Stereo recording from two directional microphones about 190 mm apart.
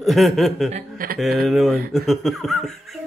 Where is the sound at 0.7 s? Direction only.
40° right (ahead or behind).